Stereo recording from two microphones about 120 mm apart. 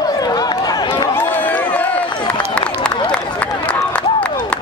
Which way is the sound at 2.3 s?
10° left (ahead or behind).